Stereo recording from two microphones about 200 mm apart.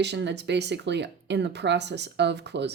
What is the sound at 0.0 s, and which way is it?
Speech, 60° right (ahead or behind).